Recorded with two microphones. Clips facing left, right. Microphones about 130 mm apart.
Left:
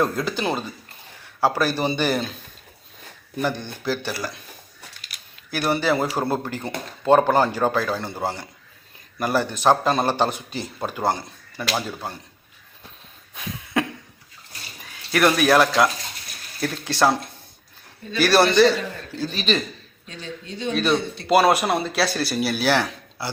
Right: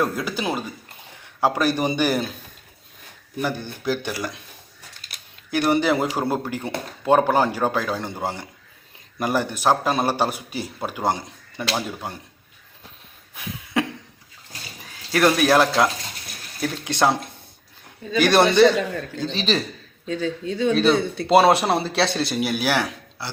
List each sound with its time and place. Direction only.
0.0 s a man's voice: 5° right (ahead or behind)
3.4 s a man's voice: 10° right (ahead or behind)
5.5 s a man's voice: 20° right (ahead or behind)
15.1 s speech: 25° right (ahead or behind)
18.2 s speech: 20° right (ahead or behind)
20.7 s speech: 30° right (ahead or behind); by 23.0 s 10° right (ahead or behind)